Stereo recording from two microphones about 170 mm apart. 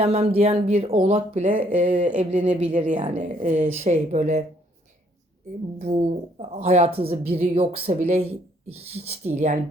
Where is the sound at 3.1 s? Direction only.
50° right (ahead or behind).